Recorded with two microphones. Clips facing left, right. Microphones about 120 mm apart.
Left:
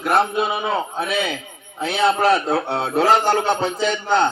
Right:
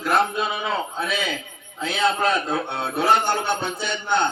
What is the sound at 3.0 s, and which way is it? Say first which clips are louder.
Speech: left 3 dB; 90° left.